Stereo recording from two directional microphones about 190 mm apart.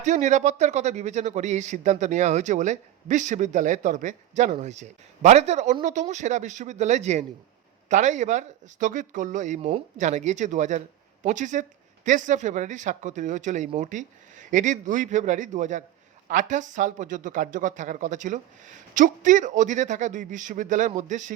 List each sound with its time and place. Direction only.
0.0 s a man's voice: 40° right (ahead or behind)